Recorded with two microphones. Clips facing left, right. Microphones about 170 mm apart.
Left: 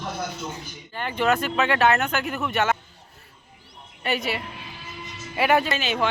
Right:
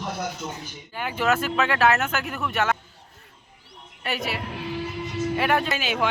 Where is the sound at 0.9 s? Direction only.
5° right (ahead or behind).